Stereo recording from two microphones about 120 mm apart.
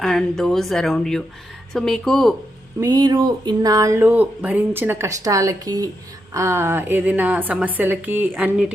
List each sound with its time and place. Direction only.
0.0 s a woman's voice: 5° left (ahead or behind)
2.8 s a sound: 35° right (ahead or behind)
4.0 s a woman's voice: 15° right (ahead or behind)